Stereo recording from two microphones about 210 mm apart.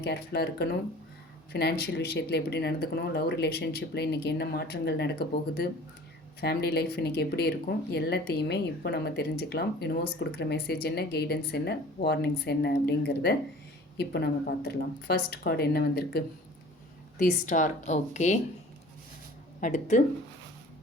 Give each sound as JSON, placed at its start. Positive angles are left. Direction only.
{"t": 0.0, "sound": "speech", "side_deg": 50}
{"t": 19.5, "sound": "speech", "side_deg": 40}